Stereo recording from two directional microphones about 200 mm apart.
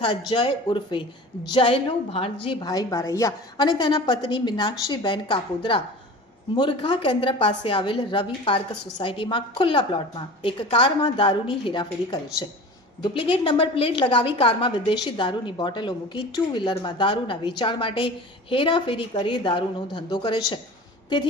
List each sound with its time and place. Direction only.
0.0 s a woman's voice: 25° left (ahead or behind)